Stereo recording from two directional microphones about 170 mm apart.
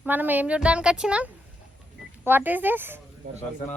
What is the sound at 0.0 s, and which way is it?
A woman's voice, 10° right (ahead or behind).